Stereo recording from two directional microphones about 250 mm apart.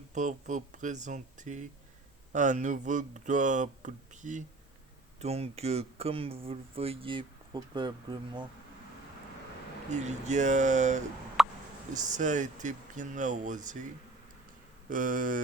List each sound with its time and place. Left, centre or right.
0.1 s speech: right
9.9 s speech: right
11.4 s a sound: centre
12.1 s speech: right
14.8 s speech: right